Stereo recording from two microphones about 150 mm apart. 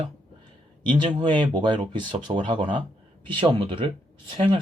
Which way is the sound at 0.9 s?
35° right (ahead or behind).